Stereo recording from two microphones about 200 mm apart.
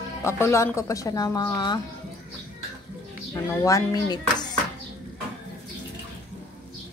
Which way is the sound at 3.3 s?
15° left (ahead or behind).